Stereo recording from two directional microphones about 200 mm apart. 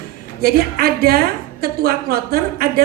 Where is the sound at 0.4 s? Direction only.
50° right (ahead or behind).